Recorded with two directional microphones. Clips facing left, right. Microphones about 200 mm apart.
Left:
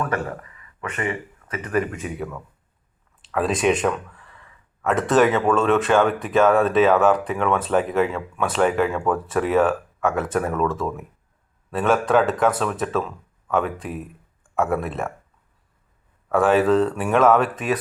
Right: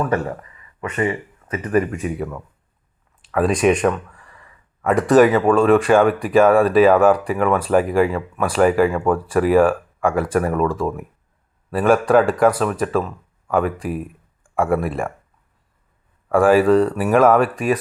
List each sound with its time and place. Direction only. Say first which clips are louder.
0.0 s speech: right 4 dB; 25° right (ahead or behind)
1.4 s a sound: right 10 dB; 25° right (ahead or behind)
1.9 s speech: right 5 dB; centre (ahead or behind)
3.3 s speech: right 4 dB; centre (ahead or behind)
16.3 s speech: right 4 dB; 10° right (ahead or behind)